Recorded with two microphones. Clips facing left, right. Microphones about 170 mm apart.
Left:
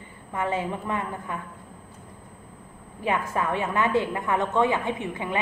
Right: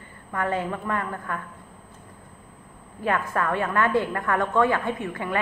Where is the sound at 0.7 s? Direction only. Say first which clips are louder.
Right 1 dB; 20° left (ahead or behind).